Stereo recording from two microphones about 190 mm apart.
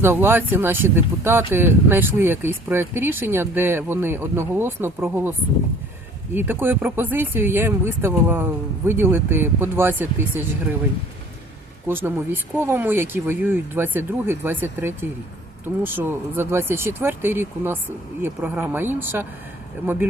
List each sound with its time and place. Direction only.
0.0 s speech: 10° right (ahead or behind)
6.3 s speech: 10° right (ahead or behind)
11.9 s speech: 10° right (ahead or behind)